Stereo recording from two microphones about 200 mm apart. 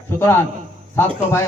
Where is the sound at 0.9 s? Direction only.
15° left (ahead or behind).